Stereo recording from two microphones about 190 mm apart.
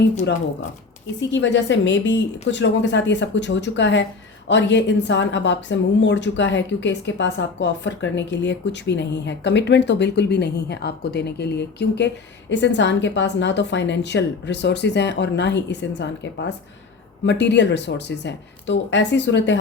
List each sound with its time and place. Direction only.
1.2 s a woman's voice: 70° left (ahead or behind)